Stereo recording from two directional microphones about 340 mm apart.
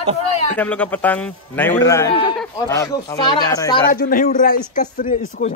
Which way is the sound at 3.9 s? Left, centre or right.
Left.